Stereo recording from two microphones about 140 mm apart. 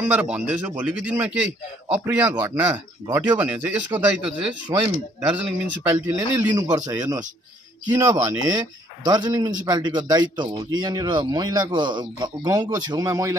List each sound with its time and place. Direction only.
0.0 s speech: 10° right (ahead or behind)
6.1 s speech: 25° right (ahead or behind)